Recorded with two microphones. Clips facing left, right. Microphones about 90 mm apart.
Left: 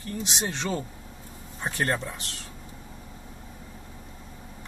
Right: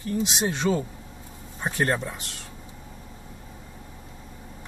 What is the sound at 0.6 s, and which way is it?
Speech, 10° right (ahead or behind).